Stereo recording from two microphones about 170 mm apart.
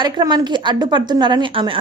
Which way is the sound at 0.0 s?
25° right (ahead or behind).